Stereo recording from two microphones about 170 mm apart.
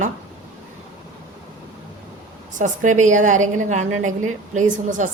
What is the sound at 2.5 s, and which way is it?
A woman's voice, 45° right (ahead or behind).